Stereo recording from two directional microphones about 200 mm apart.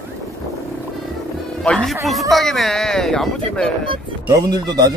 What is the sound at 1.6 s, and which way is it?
Speech, 5° left (ahead or behind).